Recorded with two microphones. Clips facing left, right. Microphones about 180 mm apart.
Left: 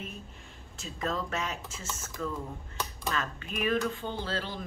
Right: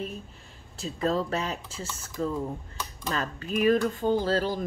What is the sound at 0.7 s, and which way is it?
Speech, 35° right (ahead or behind).